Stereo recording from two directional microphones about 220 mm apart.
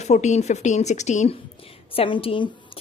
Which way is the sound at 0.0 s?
30° left (ahead or behind).